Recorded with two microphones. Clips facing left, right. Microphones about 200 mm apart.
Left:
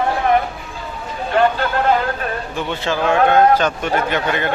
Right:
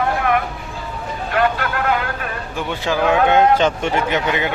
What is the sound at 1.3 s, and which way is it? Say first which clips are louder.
Vehicle: left 3 dB; 30° left (ahead or behind).